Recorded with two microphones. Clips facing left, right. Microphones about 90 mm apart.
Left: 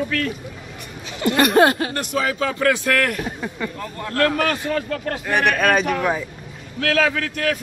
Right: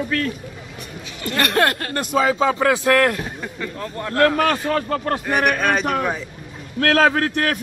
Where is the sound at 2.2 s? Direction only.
25° right (ahead or behind).